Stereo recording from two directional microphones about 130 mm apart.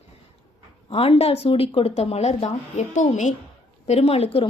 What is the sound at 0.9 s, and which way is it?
A woman's voice, 45° left (ahead or behind).